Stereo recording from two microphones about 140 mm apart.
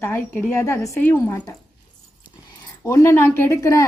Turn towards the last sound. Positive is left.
turn(degrees=20)  # may be behind; listen again after turning